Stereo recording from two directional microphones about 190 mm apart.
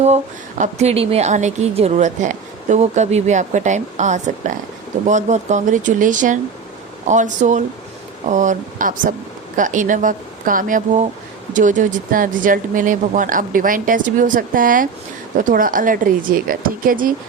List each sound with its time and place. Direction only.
0.6 s a woman's voice: 35° right (ahead or behind)